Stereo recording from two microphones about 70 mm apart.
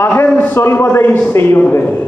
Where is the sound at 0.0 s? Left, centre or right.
Left.